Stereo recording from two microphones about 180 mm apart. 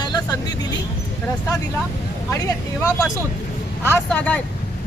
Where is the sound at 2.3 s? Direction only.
15° left (ahead or behind).